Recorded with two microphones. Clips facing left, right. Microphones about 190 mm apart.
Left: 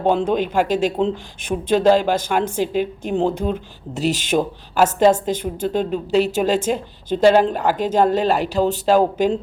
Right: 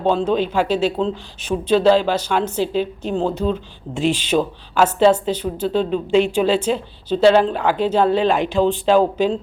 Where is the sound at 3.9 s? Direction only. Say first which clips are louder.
Right 1 dB; 40° left (ahead or behind).